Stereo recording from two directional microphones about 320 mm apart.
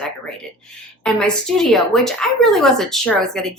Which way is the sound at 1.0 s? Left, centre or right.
Centre.